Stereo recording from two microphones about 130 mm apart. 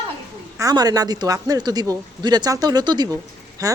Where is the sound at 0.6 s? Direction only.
30° right (ahead or behind).